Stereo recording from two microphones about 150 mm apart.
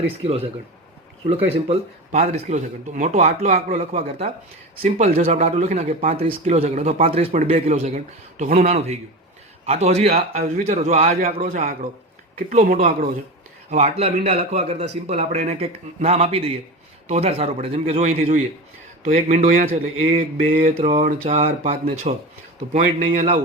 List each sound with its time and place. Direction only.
1.2 s a man's voice: 40° right (ahead or behind)
2.3 s speech: 55° right (ahead or behind)
13.7 s speech: 45° right (ahead or behind)
20.0 s speech: 45° right (ahead or behind)
20.5 s mantra: 70° right (ahead or behind)
20.9 s speech: 50° right (ahead or behind)